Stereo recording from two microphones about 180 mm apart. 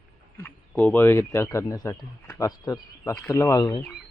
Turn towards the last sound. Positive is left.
turn(degrees=20)  # may be behind; listen again after turning